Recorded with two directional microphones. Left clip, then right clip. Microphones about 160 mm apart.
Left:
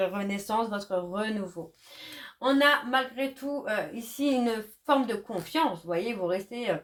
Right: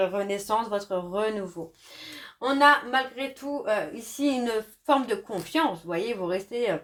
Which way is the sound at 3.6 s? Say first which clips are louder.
Right 6 dB; 30° left (ahead or behind).